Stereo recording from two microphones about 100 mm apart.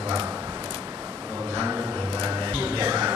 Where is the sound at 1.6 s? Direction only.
20° right (ahead or behind).